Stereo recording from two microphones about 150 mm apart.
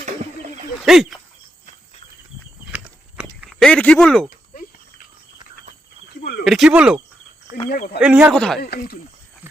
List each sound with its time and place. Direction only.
0.8 s speech: centre (ahead or behind)
2.7 s biting: 10° right (ahead or behind)
3.6 s speech: 5° left (ahead or behind)
6.4 s speech: centre (ahead or behind)
8.3 s speech: 5° left (ahead or behind)
8.6 s speech: 90° left